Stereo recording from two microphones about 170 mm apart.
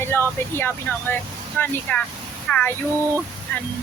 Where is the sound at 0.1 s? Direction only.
10° left (ahead or behind).